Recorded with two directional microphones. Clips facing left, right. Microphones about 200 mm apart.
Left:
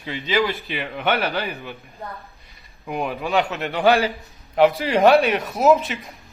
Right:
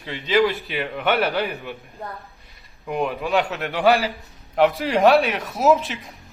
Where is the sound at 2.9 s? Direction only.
Centre (ahead or behind).